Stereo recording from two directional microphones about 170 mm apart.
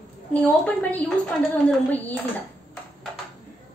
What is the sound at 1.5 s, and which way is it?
Speech, 10° left (ahead or behind).